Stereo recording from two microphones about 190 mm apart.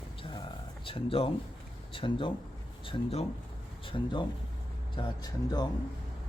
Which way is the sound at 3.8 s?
25° left (ahead or behind).